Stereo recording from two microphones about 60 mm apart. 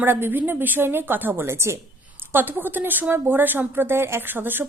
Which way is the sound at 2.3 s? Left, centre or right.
Right.